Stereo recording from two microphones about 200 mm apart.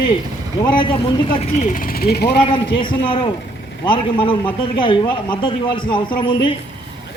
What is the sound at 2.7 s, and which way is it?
A man's voice, 25° left (ahead or behind).